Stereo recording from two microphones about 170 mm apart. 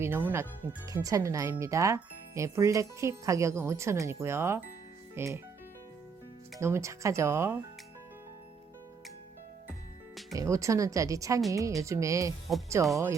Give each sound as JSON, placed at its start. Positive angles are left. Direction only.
{"t": 0.0, "sound": "speech", "side_deg": -10}
{"t": 6.6, "sound": "speech", "side_deg": -15}
{"t": 10.3, "sound": "speech", "side_deg": -20}